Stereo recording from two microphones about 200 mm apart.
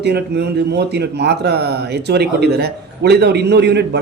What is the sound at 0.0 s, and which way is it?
Speech, 55° right (ahead or behind).